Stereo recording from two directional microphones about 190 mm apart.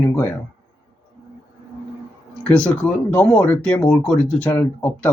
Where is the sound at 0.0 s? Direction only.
10° left (ahead or behind).